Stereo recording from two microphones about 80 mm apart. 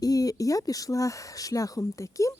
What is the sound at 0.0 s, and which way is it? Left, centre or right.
Speech, left.